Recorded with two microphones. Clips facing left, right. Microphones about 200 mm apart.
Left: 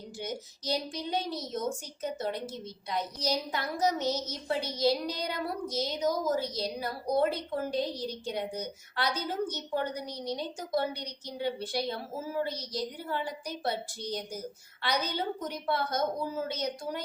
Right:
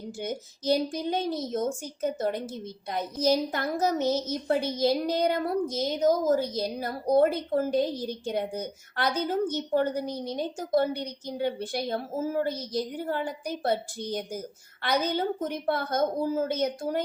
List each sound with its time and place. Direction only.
0.2 s a child's voice: 55° right (ahead or behind)